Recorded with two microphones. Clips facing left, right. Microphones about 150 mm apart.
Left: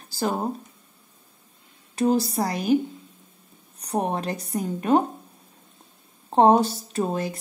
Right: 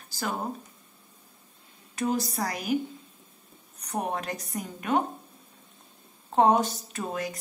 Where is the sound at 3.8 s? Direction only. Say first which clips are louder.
Left 5 dB; 30° left (ahead or behind).